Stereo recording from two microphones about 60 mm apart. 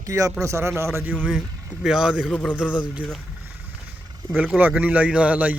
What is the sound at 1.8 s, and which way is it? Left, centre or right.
Speech, centre.